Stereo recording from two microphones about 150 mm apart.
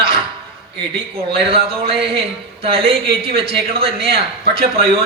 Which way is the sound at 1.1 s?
40° right (ahead or behind).